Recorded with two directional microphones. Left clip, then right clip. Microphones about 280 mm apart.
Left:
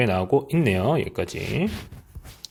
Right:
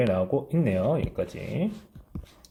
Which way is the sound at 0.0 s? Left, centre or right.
Left.